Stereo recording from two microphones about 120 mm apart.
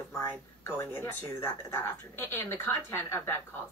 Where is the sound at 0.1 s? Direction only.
20° left (ahead or behind).